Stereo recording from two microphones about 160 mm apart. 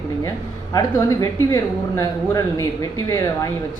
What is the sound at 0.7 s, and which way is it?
Speech, 20° left (ahead or behind).